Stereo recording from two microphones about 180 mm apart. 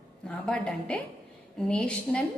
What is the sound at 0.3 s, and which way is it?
A woman's voice, 5° left (ahead or behind).